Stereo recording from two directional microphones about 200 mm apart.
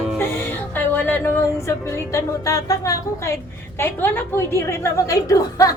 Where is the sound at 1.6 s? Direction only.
15° left (ahead or behind).